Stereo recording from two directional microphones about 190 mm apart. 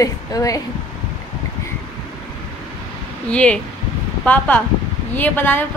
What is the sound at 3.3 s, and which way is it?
A woman's voice, 5° left (ahead or behind).